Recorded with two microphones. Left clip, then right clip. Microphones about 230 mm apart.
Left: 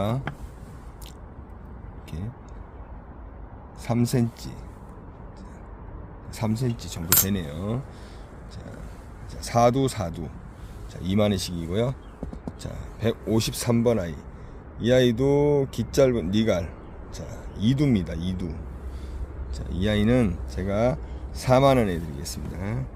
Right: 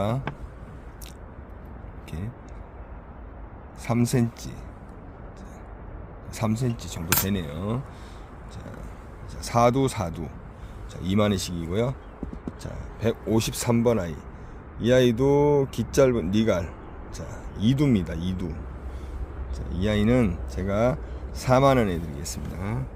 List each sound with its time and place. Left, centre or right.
2.0 s speech: centre
3.8 s speech: centre
6.3 s speech: centre
9.4 s speech: centre
19.5 s speech: centre